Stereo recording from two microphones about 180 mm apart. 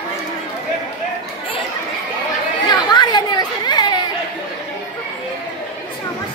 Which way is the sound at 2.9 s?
25° left (ahead or behind).